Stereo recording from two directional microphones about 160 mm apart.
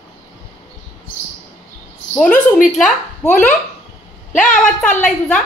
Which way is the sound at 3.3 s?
50° left (ahead or behind).